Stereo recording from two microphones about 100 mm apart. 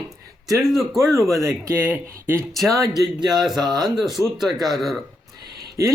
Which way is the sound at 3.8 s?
Centre (ahead or behind).